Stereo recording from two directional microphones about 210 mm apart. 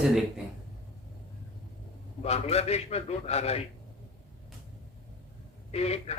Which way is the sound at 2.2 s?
30° left (ahead or behind).